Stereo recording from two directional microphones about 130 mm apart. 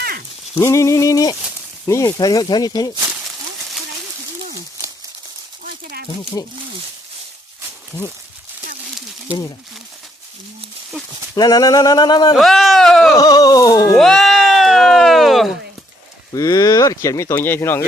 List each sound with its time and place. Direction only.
0.6 s speech: 25° left (ahead or behind)
6.4 s speech: 30° left (ahead or behind)
11.3 s speech: 30° left (ahead or behind)
12.4 s speech: centre (ahead or behind)
13.1 s speech: 30° left (ahead or behind)
14.0 s speech: centre (ahead or behind)
16.3 s speech: 25° left (ahead or behind)